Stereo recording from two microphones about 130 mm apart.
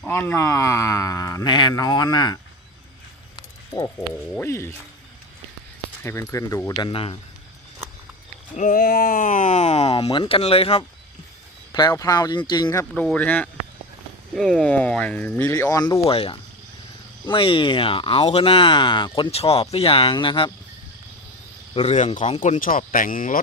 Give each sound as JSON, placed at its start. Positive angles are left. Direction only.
{"t": 0.1, "sound": "speech", "side_deg": 20}
{"t": 1.5, "sound": "speech", "side_deg": 35}
{"t": 3.8, "sound": "speech", "side_deg": 20}
{"t": 6.0, "sound": "speech", "side_deg": 20}
{"t": 8.5, "sound": "speech", "side_deg": 85}
{"t": 11.7, "sound": "speech", "side_deg": 30}
{"t": 12.9, "sound": "speech", "side_deg": 5}
{"t": 15.5, "sound": "speech", "side_deg": 25}
{"t": 16.0, "sound": "speech", "side_deg": 45}
{"t": 19.3, "sound": "speech", "side_deg": 50}
{"t": 21.9, "sound": "speech", "side_deg": 65}
{"t": 22.9, "sound": "speech", "side_deg": 90}